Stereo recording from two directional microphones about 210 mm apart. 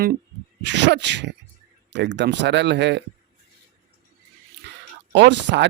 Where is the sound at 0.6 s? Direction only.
55° right (ahead or behind).